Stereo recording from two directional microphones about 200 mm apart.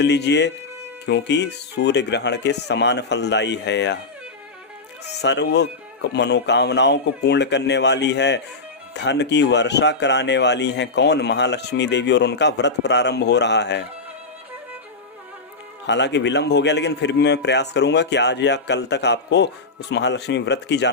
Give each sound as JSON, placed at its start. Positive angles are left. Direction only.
{"t": 0.0, "sound": "speech", "side_deg": 60}
{"t": 5.2, "sound": "speech", "side_deg": 60}
{"t": 15.9, "sound": "speech", "side_deg": 60}